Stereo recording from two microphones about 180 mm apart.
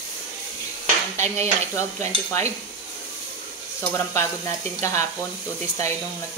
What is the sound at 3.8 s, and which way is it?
Speech, 15° left (ahead or behind).